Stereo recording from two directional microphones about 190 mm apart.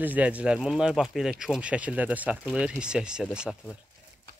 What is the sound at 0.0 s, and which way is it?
Speech, 10° right (ahead or behind).